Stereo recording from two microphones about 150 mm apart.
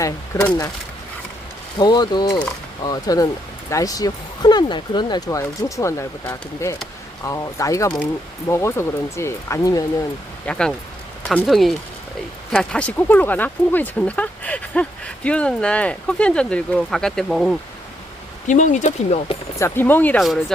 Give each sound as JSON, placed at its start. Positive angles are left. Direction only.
{"t": 0.3, "sound": "speech", "side_deg": 20}
{"t": 1.8, "sound": "speech", "side_deg": 30}
{"t": 10.4, "sound": "speech", "side_deg": 5}
{"t": 18.4, "sound": "speech", "side_deg": 55}
{"t": 19.5, "sound": "speech", "side_deg": 15}
{"t": 20.1, "sound": "speech", "side_deg": 0}